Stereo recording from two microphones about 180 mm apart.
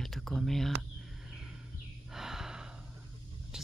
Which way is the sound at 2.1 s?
Centre (ahead or behind).